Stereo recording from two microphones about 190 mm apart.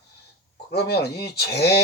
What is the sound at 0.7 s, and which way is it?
Speech, 60° left (ahead or behind).